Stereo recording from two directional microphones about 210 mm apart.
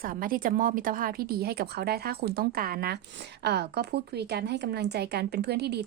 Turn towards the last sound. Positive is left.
turn(degrees=-50)  # may be behind; listen again after turning